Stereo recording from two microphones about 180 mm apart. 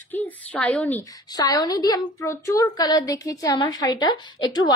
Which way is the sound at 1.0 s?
20° left (ahead or behind).